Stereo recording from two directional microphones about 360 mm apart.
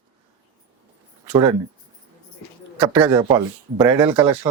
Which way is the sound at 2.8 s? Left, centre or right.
Centre.